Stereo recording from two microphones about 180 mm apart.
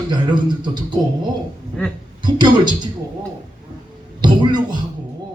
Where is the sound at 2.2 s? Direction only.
25° right (ahead or behind).